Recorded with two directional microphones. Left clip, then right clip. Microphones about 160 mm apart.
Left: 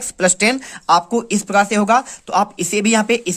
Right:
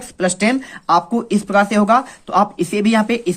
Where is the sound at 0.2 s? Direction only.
40° left (ahead or behind).